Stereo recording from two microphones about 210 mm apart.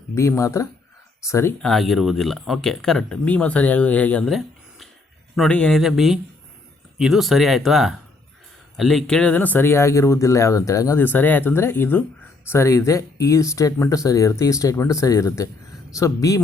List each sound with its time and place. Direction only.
0.1 s speech: 15° left (ahead or behind)